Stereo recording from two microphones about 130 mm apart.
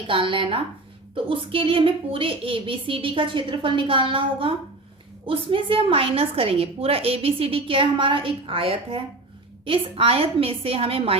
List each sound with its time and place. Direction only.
0.1 s a woman's voice: 40° right (ahead or behind)